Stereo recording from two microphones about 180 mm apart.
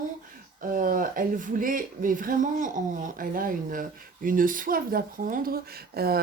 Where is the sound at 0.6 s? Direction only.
50° right (ahead or behind).